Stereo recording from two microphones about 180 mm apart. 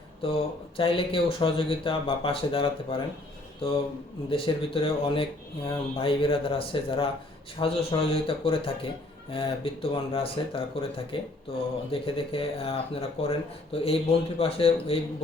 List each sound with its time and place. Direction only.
0.2 s speech: 30° left (ahead or behind)